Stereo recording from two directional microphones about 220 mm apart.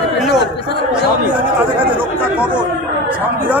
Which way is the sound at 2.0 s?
10° right (ahead or behind).